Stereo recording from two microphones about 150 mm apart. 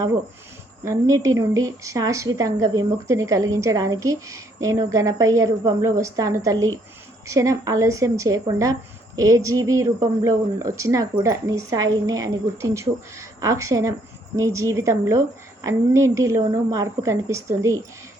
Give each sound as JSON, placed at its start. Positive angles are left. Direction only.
{"t": 0.9, "sound": "a woman's voice", "side_deg": -20}